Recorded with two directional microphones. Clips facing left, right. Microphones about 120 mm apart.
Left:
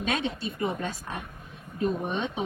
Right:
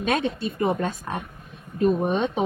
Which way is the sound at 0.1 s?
50° right (ahead or behind).